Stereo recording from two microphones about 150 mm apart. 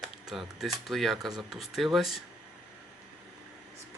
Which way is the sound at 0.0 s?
Centre (ahead or behind).